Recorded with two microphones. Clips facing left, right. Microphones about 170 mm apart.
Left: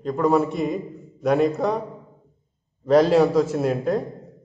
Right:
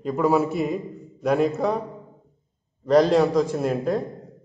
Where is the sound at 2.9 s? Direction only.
Centre (ahead or behind).